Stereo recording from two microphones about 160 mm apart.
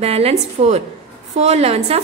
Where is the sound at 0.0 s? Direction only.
40° right (ahead or behind).